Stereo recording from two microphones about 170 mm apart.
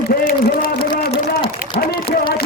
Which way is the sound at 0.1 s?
60° left (ahead or behind).